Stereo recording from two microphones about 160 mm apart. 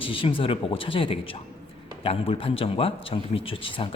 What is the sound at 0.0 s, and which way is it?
A man's voice, 35° left (ahead or behind).